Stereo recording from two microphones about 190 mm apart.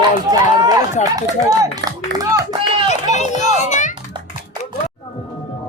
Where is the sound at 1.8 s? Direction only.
75° right (ahead or behind).